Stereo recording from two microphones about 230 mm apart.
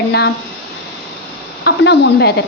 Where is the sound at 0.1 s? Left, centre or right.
Left.